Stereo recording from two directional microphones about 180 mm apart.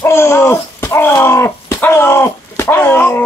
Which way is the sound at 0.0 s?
15° left (ahead or behind).